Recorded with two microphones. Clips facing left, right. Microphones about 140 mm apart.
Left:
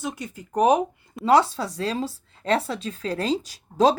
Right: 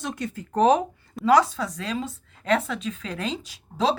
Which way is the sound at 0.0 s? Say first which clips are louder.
Right 1 dB; 10° left (ahead or behind).